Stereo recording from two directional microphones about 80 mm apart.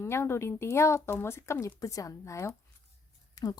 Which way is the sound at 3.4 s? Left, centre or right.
Left.